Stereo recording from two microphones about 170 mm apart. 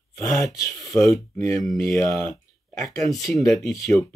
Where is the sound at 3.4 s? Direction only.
Centre (ahead or behind).